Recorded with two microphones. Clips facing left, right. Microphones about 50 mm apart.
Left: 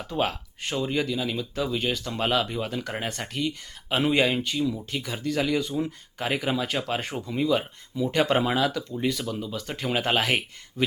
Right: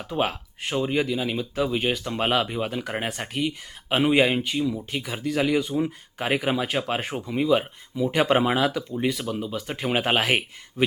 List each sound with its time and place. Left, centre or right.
0.0 s speech: centre